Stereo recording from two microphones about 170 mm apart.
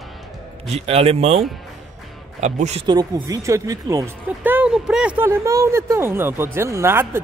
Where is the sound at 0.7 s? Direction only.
35° right (ahead or behind).